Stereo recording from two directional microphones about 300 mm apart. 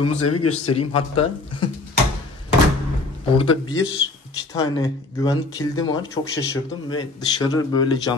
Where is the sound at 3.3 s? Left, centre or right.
Centre.